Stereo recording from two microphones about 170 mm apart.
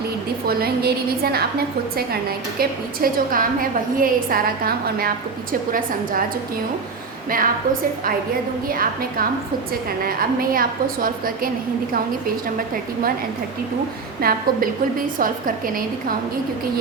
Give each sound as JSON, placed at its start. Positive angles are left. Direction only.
{"t": 0.4, "sound": "a woman's voice", "side_deg": -65}
{"t": 2.6, "sound": "a woman's voice", "side_deg": -55}
{"t": 7.3, "sound": "a woman's voice", "side_deg": -55}
{"t": 14.2, "sound": "a woman's voice", "side_deg": -60}